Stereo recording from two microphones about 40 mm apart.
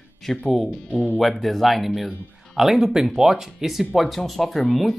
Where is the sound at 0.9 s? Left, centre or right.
Left.